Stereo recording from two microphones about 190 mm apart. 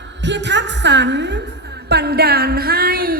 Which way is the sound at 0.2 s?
70° right (ahead or behind).